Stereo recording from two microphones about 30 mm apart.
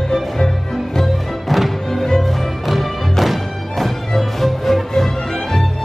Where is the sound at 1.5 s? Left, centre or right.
Centre.